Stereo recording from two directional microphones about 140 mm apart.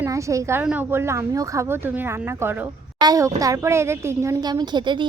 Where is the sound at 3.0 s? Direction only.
25° right (ahead or behind).